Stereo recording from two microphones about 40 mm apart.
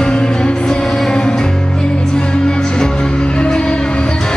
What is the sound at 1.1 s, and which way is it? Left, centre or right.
Music, left.